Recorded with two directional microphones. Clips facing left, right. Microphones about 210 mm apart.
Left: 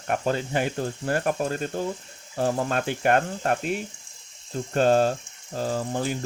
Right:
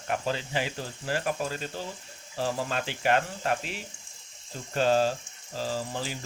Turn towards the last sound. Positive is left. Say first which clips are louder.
# left 6 dB
turn(degrees=55)  # may be behind; listen again after turning